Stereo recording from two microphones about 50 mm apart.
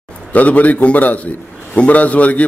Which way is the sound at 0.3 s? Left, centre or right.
Left.